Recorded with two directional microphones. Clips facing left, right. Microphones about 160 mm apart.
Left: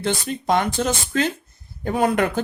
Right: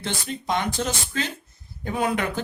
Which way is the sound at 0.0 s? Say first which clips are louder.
Left 6 dB; 55° left (ahead or behind).